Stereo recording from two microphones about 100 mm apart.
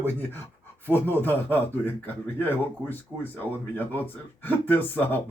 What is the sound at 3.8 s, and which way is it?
Speech, 20° left (ahead or behind).